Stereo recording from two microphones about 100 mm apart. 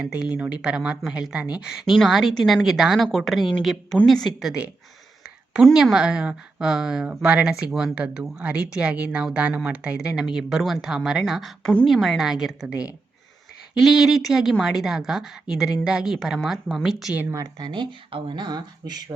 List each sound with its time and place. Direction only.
0.0 s a woman's voice: 10° right (ahead or behind)
5.7 s a woman's voice: 5° right (ahead or behind)
13.7 s a woman's voice: 5° right (ahead or behind)
17.3 s speech: 35° right (ahead or behind)
17.7 s speech: 55° right (ahead or behind)